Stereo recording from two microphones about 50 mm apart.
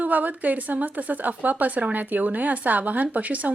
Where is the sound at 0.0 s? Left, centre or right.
Right.